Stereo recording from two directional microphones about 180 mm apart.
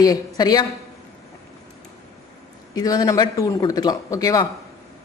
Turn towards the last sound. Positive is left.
turn(degrees=20)  # may be behind; listen again after turning